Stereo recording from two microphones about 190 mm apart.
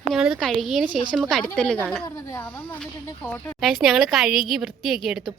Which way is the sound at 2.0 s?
15° left (ahead or behind).